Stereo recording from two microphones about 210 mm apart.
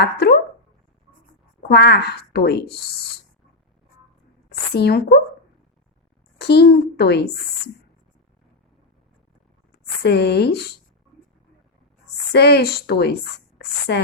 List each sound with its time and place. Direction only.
0.0 s a sound: 50° left (ahead or behind)
1.6 s speech: 50° left (ahead or behind)
4.7 s speech: 50° left (ahead or behind)
6.4 s speech: 50° left (ahead or behind)
10.0 s speech: 50° left (ahead or behind)
12.3 s speech: 50° left (ahead or behind)